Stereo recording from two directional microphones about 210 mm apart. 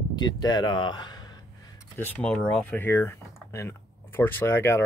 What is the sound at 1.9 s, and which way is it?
Speech, 10° left (ahead or behind).